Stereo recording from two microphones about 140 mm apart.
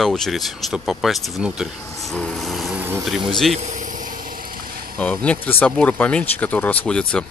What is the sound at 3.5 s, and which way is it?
Vehicle, 60° right (ahead or behind).